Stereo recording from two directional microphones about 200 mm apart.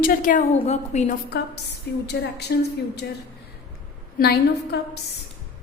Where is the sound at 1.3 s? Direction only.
55° left (ahead or behind).